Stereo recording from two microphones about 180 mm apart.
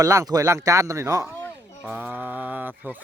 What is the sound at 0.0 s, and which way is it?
Speech, 15° right (ahead or behind).